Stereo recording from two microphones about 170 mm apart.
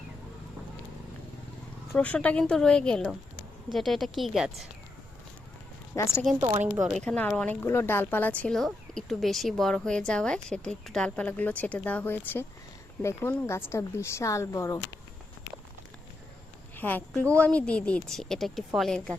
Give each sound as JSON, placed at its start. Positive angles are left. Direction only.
{"t": 1.9, "sound": "speech", "side_deg": 10}
{"t": 5.9, "sound": "speech", "side_deg": 15}
{"t": 6.9, "sound": "speech", "side_deg": 5}
{"t": 16.7, "sound": "a woman's voice", "side_deg": 10}